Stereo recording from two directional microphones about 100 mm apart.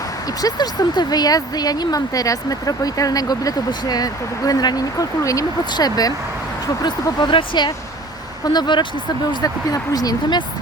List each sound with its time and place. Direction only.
0.4 s speech: 40° left (ahead or behind)
6.8 s speech: 50° left (ahead or behind)
9.3 s speech: 40° left (ahead or behind)